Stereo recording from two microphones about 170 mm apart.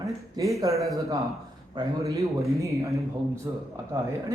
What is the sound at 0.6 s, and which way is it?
A man's voice, 20° right (ahead or behind).